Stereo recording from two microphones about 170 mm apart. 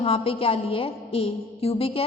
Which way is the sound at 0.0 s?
35° left (ahead or behind).